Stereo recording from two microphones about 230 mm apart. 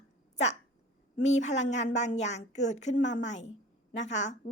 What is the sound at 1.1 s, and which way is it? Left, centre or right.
A woman's voice, left.